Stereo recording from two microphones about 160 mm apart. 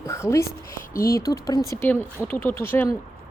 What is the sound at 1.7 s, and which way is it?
Speech, 15° left (ahead or behind).